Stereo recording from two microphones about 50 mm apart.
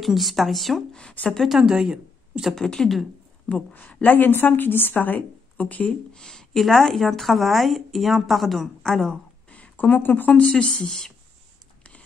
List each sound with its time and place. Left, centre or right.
0.0 s a woman's voice: centre
1.2 s a woman's voice: left
1.5 s speech: centre
2.5 s speech: centre
3.7 s a woman's voice: left
6.1 s a woman's voice: centre
9.5 s a sound: left
10.6 s speech: centre
10.9 s a woman's voice: centre